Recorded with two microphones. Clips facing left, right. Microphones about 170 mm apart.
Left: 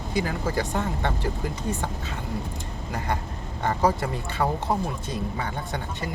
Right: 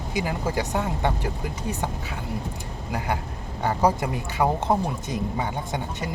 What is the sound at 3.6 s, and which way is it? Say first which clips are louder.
Speech: right 1 dB; 10° right (ahead or behind).